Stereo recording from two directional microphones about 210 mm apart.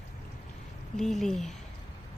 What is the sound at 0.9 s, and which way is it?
Speech, centre (ahead or behind).